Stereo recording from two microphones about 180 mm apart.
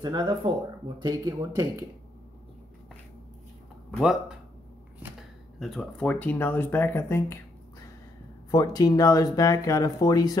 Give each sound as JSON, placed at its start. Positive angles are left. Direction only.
{"t": 0.0, "sound": "speech", "side_deg": -25}
{"t": 5.0, "sound": "a sound", "side_deg": -10}
{"t": 5.6, "sound": "speech", "side_deg": 0}
{"t": 8.5, "sound": "speech", "side_deg": 20}